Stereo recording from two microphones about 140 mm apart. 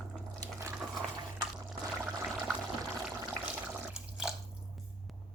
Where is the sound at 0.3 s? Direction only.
20° right (ahead or behind).